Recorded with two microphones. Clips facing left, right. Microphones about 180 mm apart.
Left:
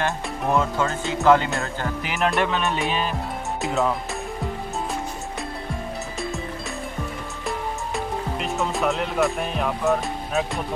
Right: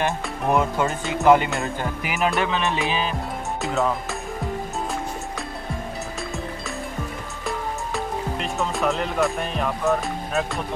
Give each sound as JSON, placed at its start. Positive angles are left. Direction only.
{"t": 0.0, "sound": "speech", "side_deg": -15}
{"t": 2.1, "sound": "speech", "side_deg": 0}
{"t": 7.4, "sound": "music", "side_deg": 0}